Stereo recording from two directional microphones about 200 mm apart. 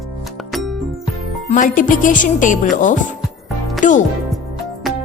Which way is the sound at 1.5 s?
40° left (ahead or behind).